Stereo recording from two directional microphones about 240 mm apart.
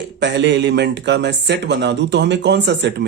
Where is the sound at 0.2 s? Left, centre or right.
Right.